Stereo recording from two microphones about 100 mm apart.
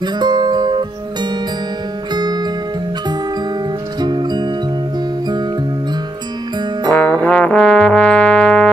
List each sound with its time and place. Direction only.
0.0 s music: 45° right (ahead or behind)
2.1 s music: 45° right (ahead or behind)
4.0 s music: 50° right (ahead or behind)
6.9 s trombone: 15° left (ahead or behind)